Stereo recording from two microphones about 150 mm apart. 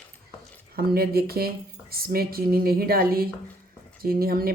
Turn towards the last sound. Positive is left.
turn(degrees=-80)